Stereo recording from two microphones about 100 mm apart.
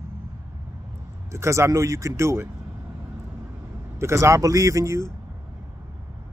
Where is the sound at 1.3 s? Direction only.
30° right (ahead or behind).